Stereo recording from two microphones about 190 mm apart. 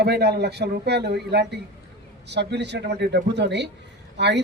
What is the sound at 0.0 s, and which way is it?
A man's voice, 60° right (ahead or behind).